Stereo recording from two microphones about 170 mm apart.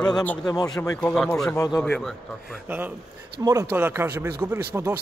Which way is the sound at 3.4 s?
20° right (ahead or behind).